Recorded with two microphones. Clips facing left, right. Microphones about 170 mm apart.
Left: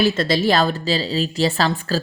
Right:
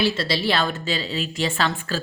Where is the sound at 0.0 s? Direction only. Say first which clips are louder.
Left 5 dB; 45° left (ahead or behind).